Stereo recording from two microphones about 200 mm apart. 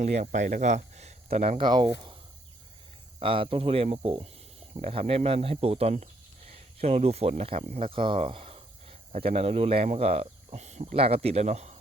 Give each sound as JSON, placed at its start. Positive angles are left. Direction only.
{"t": 0.0, "sound": "speech", "side_deg": -35}
{"t": 3.2, "sound": "speech", "side_deg": -25}